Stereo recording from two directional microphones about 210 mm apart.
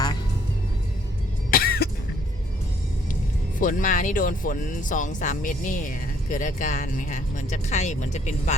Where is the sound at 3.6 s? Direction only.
40° left (ahead or behind).